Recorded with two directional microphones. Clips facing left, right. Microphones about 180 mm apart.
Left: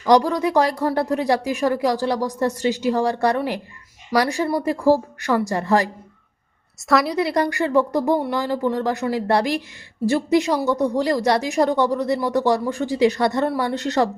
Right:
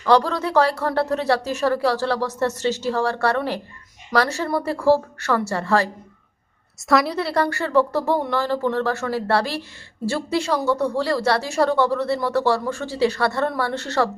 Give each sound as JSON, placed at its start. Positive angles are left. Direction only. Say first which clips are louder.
{"t": 0.0, "sound": "speech", "louder": "left 2 dB", "side_deg": 15}
{"t": 6.8, "sound": "a woman's voice", "louder": "even", "side_deg": 0}
{"t": 7.2, "sound": "speech", "louder": "left 2 dB", "side_deg": 15}